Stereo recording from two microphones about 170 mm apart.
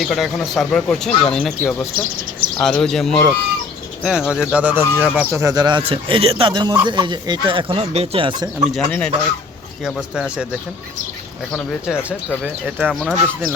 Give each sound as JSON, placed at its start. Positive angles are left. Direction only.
{"t": 0.0, "sound": "speech", "side_deg": 0}
{"t": 5.3, "sound": "speech", "side_deg": -20}
{"t": 8.7, "sound": "speech", "side_deg": 5}
{"t": 11.5, "sound": "speech", "side_deg": 0}